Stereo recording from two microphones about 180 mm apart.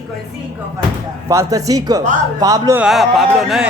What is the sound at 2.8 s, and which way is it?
Speech, centre (ahead or behind).